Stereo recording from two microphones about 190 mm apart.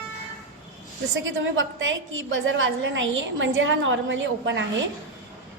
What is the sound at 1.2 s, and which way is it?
A woman's voice, 90° right.